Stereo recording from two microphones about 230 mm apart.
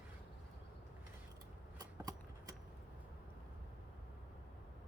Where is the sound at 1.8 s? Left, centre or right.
Centre.